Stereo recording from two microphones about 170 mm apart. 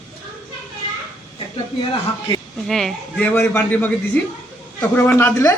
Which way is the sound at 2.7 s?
Centre (ahead or behind).